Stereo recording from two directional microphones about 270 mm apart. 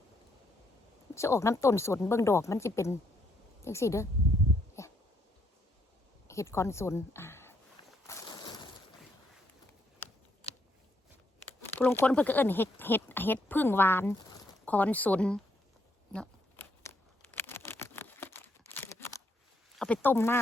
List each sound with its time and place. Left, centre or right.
1.1 s speech: centre
4.8 s a sound: centre
6.2 s a sound: centre
11.8 s speech: centre
16.1 s crumpling: centre
19.7 s speech: centre